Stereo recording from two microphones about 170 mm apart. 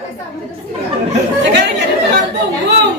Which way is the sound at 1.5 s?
85° right.